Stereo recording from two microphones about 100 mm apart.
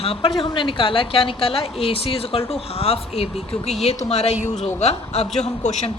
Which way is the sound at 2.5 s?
85° left.